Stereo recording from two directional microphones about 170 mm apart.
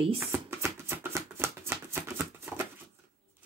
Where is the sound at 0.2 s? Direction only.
15° right (ahead or behind).